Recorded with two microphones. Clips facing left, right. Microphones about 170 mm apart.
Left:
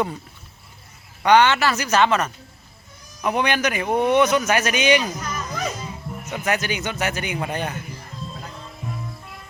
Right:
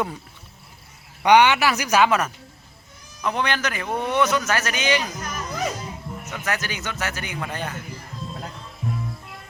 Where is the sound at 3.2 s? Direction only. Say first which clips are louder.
Left 3 dB; 15° left (ahead or behind).